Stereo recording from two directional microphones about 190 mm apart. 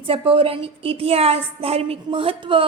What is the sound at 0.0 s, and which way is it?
A woman's voice, 30° right (ahead or behind).